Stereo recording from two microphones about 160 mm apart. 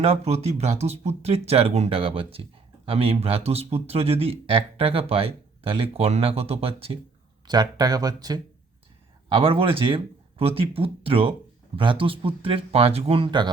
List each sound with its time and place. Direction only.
0.0 s speech: 40° right (ahead or behind)
7.4 s speech: 25° right (ahead or behind)
9.3 s speech: 35° right (ahead or behind)